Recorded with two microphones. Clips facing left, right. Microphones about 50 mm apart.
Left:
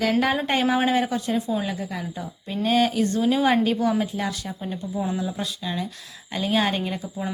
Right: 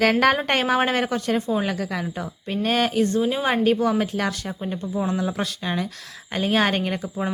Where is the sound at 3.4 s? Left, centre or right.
Right.